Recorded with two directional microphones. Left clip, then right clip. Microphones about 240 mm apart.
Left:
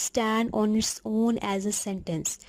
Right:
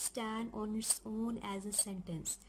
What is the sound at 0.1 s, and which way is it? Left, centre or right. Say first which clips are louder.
Speech: left 15 dB; left.